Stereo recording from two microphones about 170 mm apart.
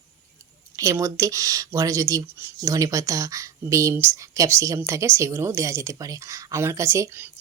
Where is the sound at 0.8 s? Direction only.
20° right (ahead or behind).